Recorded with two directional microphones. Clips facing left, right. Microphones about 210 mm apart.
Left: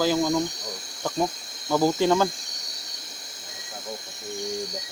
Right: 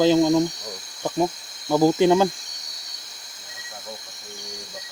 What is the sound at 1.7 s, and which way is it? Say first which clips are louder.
Speech: right 4 dB; 15° right (ahead or behind).